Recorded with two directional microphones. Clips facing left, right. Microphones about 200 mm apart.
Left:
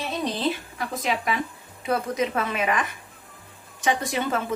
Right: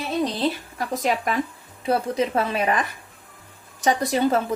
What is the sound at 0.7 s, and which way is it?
Speech, 40° right (ahead or behind).